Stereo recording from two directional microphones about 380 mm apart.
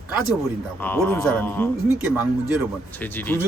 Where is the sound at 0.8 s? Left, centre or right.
Centre.